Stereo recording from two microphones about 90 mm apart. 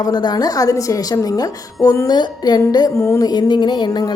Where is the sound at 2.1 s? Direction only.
55° left (ahead or behind).